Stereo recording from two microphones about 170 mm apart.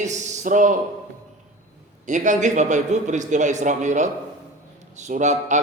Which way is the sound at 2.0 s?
45° right (ahead or behind).